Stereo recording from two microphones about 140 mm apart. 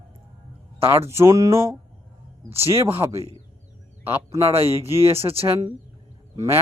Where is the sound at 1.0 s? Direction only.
20° right (ahead or behind).